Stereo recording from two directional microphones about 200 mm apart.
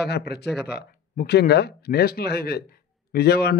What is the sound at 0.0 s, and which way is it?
A man's voice, 55° left (ahead or behind).